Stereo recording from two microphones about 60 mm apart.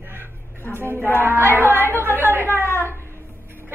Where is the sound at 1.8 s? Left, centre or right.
Left.